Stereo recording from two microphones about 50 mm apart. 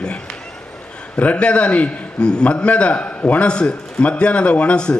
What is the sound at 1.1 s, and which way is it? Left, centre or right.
A man's voice, left.